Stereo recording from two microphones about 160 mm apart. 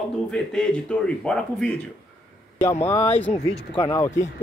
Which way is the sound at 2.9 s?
15° left (ahead or behind).